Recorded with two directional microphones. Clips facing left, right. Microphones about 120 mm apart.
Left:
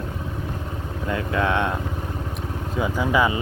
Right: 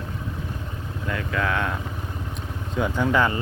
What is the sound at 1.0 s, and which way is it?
Speech, 25° left (ahead or behind).